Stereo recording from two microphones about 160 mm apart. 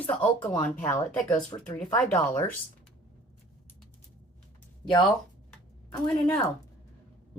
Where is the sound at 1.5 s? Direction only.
30° left (ahead or behind).